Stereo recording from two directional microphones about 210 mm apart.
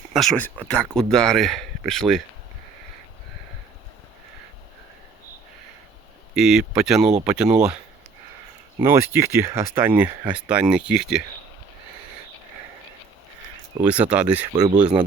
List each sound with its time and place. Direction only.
0.1 s speech: centre (ahead or behind)
6.3 s speech: centre (ahead or behind)
8.8 s speech: 10° right (ahead or behind)
13.8 s speech: 5° right (ahead or behind)
14.5 s speech: 20° right (ahead or behind)